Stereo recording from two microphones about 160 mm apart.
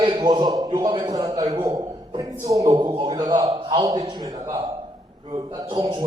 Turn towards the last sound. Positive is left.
turn(degrees=-30)  # may be behind; listen again after turning